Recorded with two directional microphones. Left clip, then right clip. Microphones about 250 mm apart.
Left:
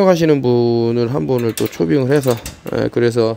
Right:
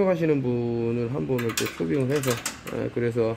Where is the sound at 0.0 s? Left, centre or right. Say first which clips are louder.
Left 10 dB; left.